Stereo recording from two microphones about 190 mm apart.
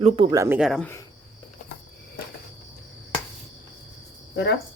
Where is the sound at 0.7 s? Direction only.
5° left (ahead or behind).